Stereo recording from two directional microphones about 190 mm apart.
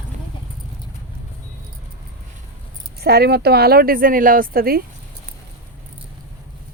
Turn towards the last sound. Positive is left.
turn(degrees=-50)  # may be behind; listen again after turning